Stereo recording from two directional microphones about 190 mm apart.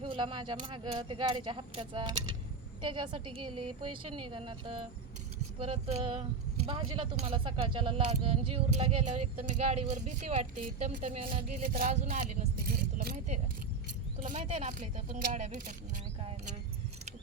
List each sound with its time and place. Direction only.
0.0 s speech: 25° right (ahead or behind)
11.2 s speech: 25° right (ahead or behind)
12.0 s vehicle: 45° right (ahead or behind)
14.2 s speech: 45° right (ahead or behind)